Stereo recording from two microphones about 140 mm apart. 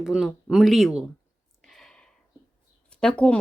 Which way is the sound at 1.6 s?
5° left (ahead or behind).